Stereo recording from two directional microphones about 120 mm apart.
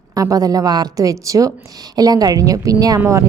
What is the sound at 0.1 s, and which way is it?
A woman's voice, 30° right (ahead or behind).